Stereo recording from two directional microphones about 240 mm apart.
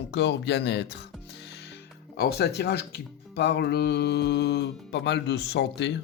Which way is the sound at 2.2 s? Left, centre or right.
Left.